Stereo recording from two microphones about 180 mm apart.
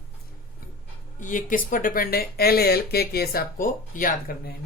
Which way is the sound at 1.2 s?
45° left (ahead or behind).